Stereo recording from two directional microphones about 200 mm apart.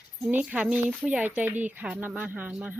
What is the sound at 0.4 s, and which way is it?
Speech, 5° right (ahead or behind).